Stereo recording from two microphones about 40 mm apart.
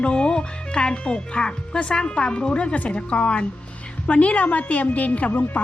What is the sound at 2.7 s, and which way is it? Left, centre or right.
Speech, left.